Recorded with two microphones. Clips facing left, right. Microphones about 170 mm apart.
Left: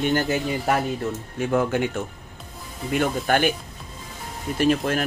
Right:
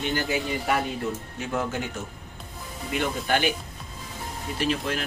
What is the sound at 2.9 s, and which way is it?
Speech, 50° left (ahead or behind).